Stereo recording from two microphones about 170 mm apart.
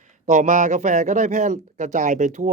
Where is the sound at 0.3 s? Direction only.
45° right (ahead or behind).